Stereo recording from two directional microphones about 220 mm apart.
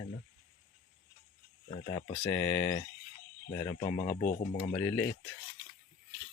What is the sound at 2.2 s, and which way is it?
Speech, 10° left (ahead or behind).